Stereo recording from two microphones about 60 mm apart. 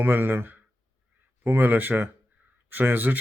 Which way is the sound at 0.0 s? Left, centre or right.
Right.